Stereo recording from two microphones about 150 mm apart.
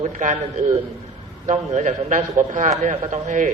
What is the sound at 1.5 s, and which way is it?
A man's voice, 55° right (ahead or behind).